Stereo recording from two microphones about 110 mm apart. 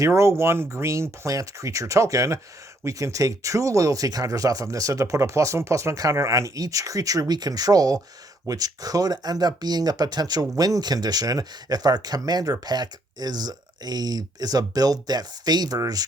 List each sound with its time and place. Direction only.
0.0 s speech: 25° right (ahead or behind)